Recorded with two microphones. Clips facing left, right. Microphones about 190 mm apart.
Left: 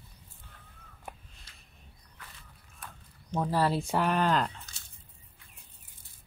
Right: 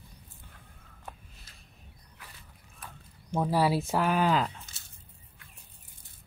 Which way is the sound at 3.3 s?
10° right (ahead or behind).